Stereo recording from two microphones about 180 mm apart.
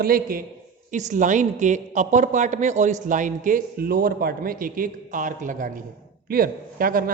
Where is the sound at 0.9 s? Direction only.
45° right (ahead or behind).